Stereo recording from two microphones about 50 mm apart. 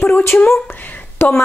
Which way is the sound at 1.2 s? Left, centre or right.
Left.